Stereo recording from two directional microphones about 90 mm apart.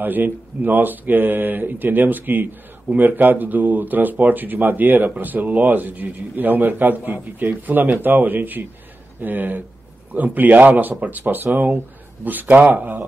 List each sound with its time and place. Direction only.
0.0 s speech: 20° right (ahead or behind)